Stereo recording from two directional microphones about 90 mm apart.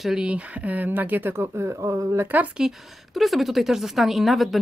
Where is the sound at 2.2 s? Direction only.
20° right (ahead or behind).